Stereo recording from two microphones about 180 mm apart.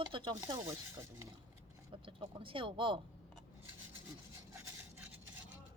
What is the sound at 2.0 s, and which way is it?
Speech, 30° right (ahead or behind).